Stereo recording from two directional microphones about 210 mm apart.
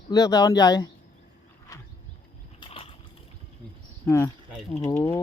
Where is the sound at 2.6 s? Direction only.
25° left (ahead or behind).